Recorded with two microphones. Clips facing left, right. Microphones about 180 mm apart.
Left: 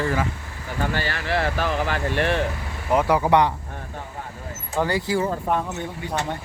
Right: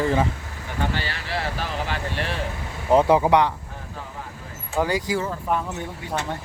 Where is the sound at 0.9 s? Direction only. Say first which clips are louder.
Left 4 dB; 50° left (ahead or behind).